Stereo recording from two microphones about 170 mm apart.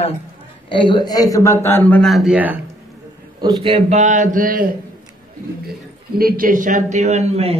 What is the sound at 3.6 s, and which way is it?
A man's voice, 35° right (ahead or behind).